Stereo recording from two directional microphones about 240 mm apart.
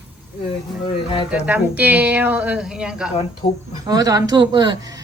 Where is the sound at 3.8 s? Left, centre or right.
Centre.